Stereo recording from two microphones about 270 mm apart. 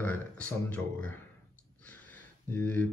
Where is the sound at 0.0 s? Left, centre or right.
Centre.